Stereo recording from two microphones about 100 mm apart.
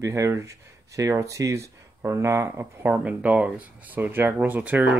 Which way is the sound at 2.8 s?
15° right (ahead or behind).